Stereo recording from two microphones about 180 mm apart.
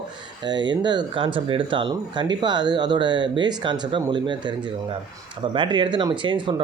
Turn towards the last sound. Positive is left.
turn(degrees=-25)  # may be behind; listen again after turning